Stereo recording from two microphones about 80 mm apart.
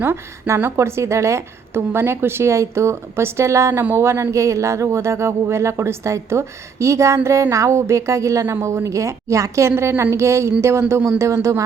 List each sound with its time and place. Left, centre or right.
0.0 s a woman's voice: right